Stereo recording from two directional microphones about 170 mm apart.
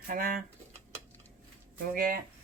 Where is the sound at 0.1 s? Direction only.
55° right (ahead or behind).